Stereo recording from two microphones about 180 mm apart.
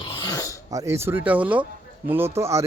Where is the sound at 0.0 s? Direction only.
25° left (ahead or behind).